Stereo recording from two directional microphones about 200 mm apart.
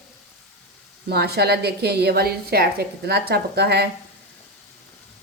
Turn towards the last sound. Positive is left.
turn(degrees=-55)  # may be behind; listen again after turning